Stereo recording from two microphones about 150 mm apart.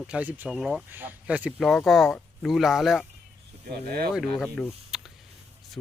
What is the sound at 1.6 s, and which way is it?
Speech, centre (ahead or behind).